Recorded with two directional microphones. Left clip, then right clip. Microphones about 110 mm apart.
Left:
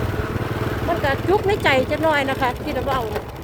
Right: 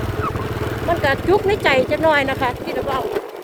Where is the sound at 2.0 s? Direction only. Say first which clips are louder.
Right 3 dB; 40° right (ahead or behind).